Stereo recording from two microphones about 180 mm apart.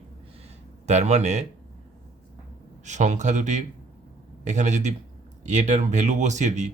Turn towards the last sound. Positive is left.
turn(degrees=-40)  # may be behind; listen again after turning